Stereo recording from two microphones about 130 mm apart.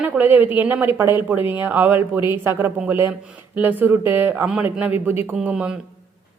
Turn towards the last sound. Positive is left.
turn(degrees=-10)  # may be behind; listen again after turning